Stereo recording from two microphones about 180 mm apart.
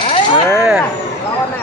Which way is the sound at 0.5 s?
5° right (ahead or behind).